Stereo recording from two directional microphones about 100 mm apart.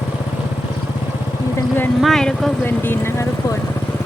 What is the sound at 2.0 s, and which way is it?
Vehicle, 5° left (ahead or behind).